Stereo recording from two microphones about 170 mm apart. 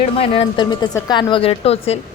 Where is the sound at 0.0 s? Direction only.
35° left (ahead or behind).